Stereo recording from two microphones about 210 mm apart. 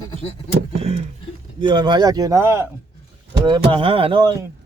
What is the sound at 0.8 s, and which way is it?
Speech, 30° right (ahead or behind).